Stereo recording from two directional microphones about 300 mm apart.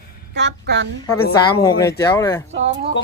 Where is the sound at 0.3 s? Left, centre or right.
Right.